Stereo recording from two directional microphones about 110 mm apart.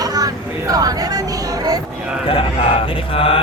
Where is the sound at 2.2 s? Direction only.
55° left (ahead or behind).